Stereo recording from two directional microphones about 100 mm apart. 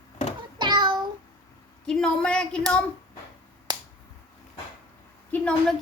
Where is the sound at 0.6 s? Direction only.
50° right (ahead or behind).